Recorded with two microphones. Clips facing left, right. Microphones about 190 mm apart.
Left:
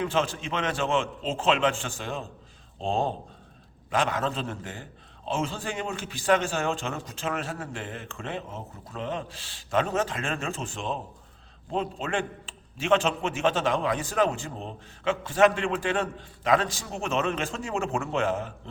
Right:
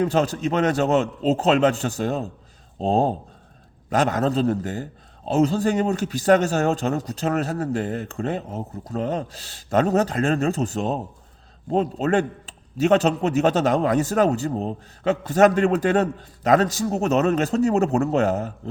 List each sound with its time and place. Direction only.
0.0 s a man's voice: 40° right (ahead or behind)